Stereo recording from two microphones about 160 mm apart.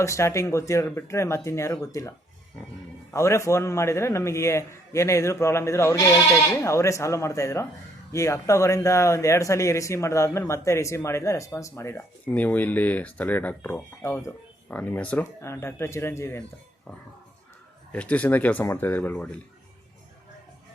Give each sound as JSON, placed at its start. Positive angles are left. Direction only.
{"t": 0.0, "sound": "speech", "side_deg": 20}
{"t": 17.9, "sound": "speech", "side_deg": 10}